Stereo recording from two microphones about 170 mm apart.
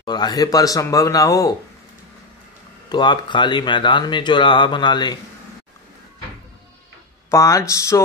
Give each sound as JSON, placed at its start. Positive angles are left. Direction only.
{"t": 0.0, "sound": "speech", "side_deg": 25}
{"t": 2.9, "sound": "speech", "side_deg": 25}
{"t": 7.2, "sound": "speech", "side_deg": 15}